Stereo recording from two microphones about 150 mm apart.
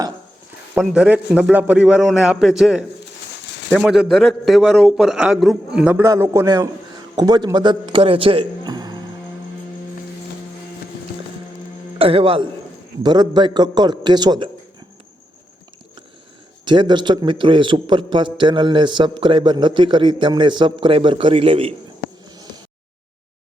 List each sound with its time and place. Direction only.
0.8 s a man's voice: 10° right (ahead or behind)
6.0 s a man's voice: 20° right (ahead or behind)
11.9 s a man's voice: 40° right (ahead or behind)
16.6 s a man's voice: 30° right (ahead or behind)